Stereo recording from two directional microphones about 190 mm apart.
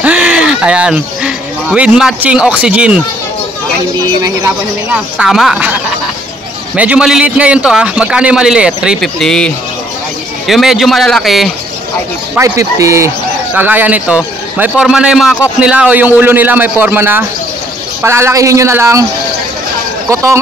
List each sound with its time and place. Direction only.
0.0 s speech: 5° right (ahead or behind)
4.9 s a man's voice: 5° right (ahead or behind)
12.4 s a man's voice: 15° right (ahead or behind)